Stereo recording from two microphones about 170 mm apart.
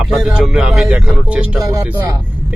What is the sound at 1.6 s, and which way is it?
Speech, 20° right (ahead or behind).